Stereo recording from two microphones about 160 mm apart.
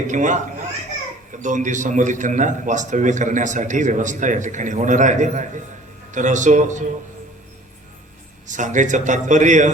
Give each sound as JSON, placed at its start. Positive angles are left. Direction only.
{"t": 0.1, "sound": "a man's voice", "side_deg": -50}
{"t": 8.4, "sound": "a man's voice", "side_deg": -50}